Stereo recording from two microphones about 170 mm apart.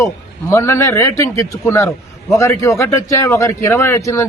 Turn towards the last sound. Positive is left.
turn(degrees=15)  # may be behind; listen again after turning